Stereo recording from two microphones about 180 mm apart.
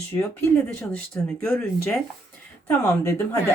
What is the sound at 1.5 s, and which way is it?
Speech, 10° left (ahead or behind).